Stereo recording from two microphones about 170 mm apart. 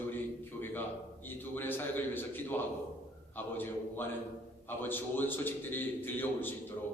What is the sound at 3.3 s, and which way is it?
A man's voice, 10° left (ahead or behind).